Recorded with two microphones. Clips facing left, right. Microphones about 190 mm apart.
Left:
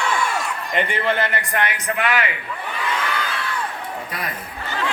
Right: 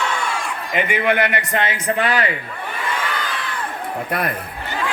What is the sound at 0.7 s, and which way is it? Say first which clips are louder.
A man's voice: right 3 dB; 10° right (ahead or behind).